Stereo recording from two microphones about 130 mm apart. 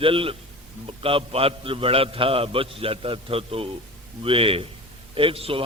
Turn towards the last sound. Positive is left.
turn(degrees=-45)  # may be behind; listen again after turning